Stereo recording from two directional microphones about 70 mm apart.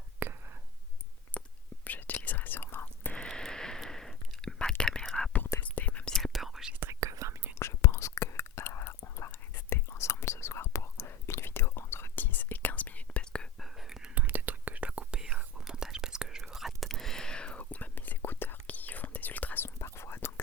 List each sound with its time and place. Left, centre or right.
0.2 s whispering: right
1.3 s whispering: centre
3.2 s whispering: centre
5.5 s whispering: left
6.1 s whispering: centre
7.0 s whispering: right
7.6 s whispering: left; by 13.5 s centre
13.6 s whispering: centre
14.2 s whispering: right; by 19.6 s left
19.6 s whispering: left